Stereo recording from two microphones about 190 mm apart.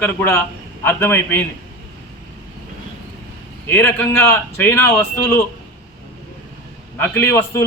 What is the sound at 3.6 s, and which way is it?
A man's voice, 10° left (ahead or behind).